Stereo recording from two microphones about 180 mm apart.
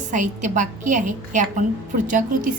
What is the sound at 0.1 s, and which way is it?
A woman's voice, 45° right (ahead or behind).